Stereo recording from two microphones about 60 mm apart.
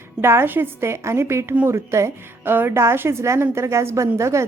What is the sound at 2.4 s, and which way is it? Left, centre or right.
A woman's voice, right.